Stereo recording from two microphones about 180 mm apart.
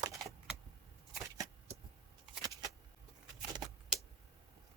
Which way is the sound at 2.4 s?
20° right (ahead or behind).